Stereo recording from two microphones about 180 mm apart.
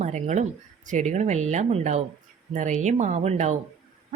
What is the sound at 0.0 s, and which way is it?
A woman's voice, 40° right (ahead or behind).